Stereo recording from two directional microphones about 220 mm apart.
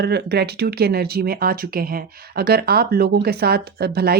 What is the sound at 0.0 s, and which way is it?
Speech, 50° right (ahead or behind).